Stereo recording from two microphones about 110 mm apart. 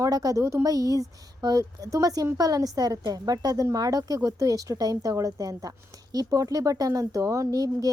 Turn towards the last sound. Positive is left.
turn(degrees=-35)  # may be behind; listen again after turning